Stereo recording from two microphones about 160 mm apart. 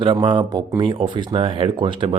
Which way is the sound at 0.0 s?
30° right (ahead or behind).